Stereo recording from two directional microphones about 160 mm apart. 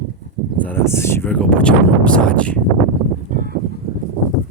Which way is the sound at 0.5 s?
10° left (ahead or behind).